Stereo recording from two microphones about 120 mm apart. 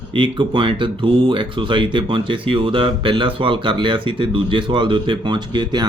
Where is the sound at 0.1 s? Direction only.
45° right (ahead or behind).